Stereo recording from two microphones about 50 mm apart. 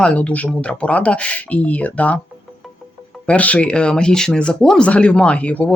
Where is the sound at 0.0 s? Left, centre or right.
Left.